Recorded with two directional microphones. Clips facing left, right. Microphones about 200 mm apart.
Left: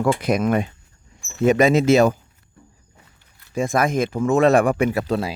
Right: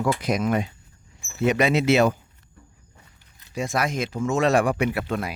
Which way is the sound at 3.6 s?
50° left (ahead or behind).